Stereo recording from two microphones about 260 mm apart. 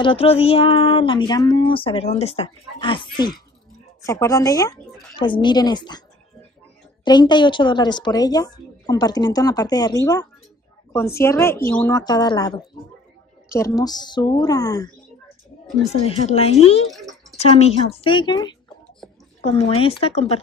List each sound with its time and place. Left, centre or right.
0.0 s a woman's voice: left
7.1 s a woman's voice: centre
16.9 s a sound: centre
17.4 s speech: left